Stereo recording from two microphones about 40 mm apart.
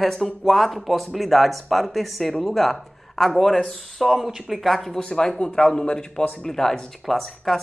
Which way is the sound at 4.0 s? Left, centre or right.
Centre.